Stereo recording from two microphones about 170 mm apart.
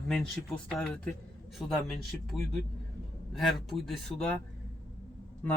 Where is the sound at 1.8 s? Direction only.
Centre (ahead or behind).